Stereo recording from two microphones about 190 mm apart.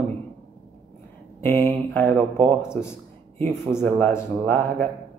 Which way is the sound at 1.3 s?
10° left (ahead or behind).